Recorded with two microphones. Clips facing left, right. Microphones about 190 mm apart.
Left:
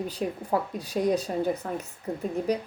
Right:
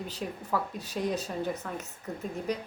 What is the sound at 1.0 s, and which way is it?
Speech, 45° left (ahead or behind).